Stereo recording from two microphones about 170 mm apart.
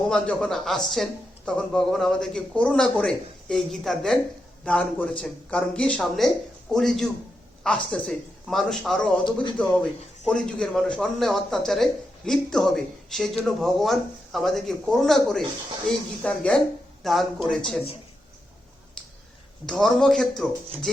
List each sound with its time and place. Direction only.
0.1 s speech: 5° left (ahead or behind)
9.2 s speech: 25° left (ahead or behind)
10.2 s speech: 5° left (ahead or behind)
19.6 s speech: 5° left (ahead or behind)